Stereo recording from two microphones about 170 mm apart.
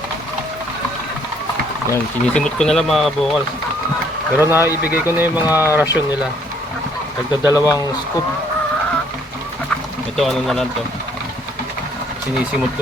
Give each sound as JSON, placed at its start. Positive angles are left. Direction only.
{"t": 1.9, "sound": "speech", "side_deg": 5}
{"t": 4.4, "sound": "speech", "side_deg": -15}
{"t": 7.4, "sound": "speech", "side_deg": 20}
{"t": 10.2, "sound": "speech", "side_deg": 0}